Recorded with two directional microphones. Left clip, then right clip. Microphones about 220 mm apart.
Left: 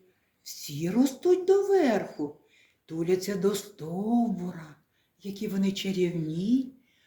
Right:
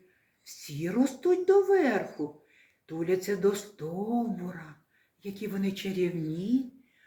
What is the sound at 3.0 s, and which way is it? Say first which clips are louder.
Speech: even; 55° left (ahead or behind).